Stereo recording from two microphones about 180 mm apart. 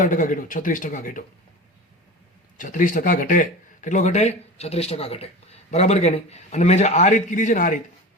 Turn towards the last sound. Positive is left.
turn(degrees=45)  # may be behind; listen again after turning